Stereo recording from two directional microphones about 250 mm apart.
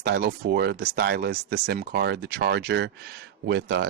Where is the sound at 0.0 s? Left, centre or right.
Right.